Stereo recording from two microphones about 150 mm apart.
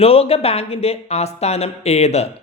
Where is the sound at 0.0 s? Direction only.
40° left (ahead or behind).